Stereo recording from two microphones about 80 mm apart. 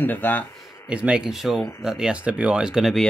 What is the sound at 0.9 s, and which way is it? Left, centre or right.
Speech, centre.